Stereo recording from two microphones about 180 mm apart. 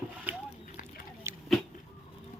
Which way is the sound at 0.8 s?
50° left (ahead or behind).